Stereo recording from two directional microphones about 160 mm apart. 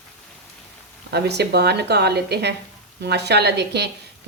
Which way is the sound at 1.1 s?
90° right.